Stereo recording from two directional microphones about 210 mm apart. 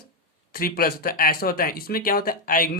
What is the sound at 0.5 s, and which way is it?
Speech, 45° left (ahead or behind).